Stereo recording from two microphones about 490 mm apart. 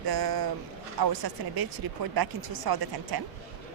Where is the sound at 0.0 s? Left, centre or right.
Right.